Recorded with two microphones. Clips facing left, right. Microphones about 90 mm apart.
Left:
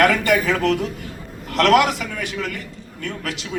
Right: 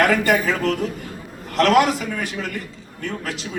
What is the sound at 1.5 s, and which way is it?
Speech, 55° left (ahead or behind).